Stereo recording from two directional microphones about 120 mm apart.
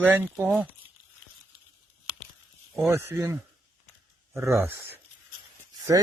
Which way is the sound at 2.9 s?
20° right (ahead or behind).